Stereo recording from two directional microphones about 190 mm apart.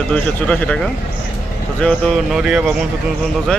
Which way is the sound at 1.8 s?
5° right (ahead or behind).